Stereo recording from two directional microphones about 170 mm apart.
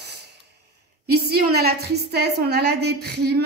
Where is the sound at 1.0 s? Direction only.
70° right (ahead or behind).